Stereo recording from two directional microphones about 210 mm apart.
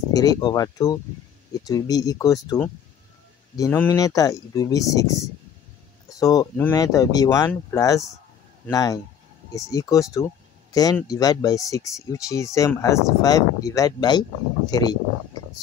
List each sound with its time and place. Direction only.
0.1 s speech: 20° left (ahead or behind)